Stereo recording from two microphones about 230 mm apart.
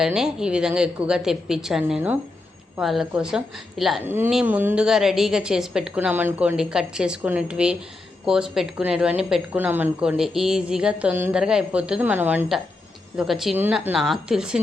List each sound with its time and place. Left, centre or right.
0.0 s a woman's voice: centre